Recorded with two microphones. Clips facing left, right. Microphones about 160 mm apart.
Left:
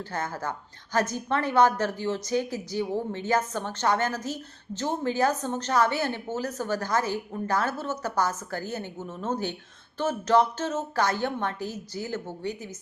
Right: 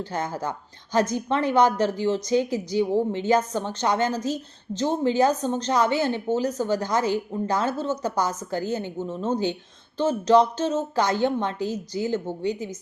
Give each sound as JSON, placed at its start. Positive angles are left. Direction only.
{"t": 0.0, "sound": "a woman's voice", "side_deg": -15}